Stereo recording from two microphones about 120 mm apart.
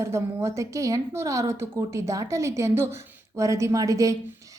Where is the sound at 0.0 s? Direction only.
25° right (ahead or behind).